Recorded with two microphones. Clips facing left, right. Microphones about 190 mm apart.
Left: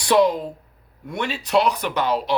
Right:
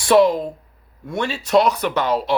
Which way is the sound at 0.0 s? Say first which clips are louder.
Right 3 dB; 20° left (ahead or behind).